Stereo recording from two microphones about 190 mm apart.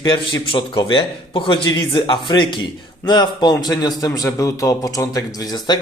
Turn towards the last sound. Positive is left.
turn(degrees=20)  # may be behind; listen again after turning